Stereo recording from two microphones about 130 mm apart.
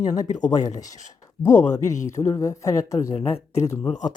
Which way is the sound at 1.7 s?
25° left (ahead or behind).